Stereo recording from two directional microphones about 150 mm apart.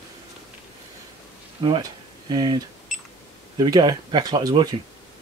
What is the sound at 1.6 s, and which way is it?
Speech, 30° right (ahead or behind).